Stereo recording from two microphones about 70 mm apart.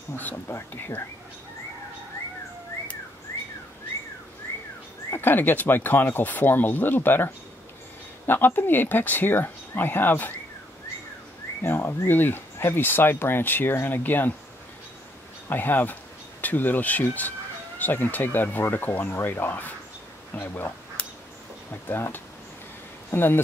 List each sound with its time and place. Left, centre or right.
0.5 s speech: left
5.1 s speech: left
11.6 s speech: left
15.4 s speech: left
21.8 s speech: left